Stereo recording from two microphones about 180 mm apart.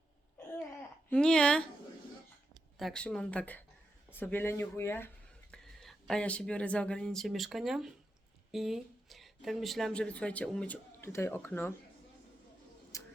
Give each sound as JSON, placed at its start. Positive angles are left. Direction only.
{"t": 1.1, "sound": "speech", "side_deg": 5}
{"t": 2.7, "sound": "speech", "side_deg": 0}
{"t": 12.9, "sound": "a sound", "side_deg": 15}